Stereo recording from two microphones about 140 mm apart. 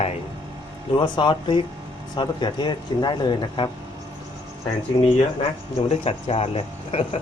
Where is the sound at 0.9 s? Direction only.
35° left (ahead or behind).